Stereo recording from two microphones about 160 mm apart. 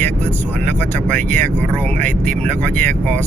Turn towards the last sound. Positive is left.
turn(degrees=10)  # may be behind; listen again after turning